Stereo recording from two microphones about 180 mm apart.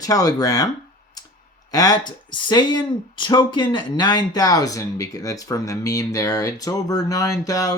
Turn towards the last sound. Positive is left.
turn(degrees=20)  # may be behind; listen again after turning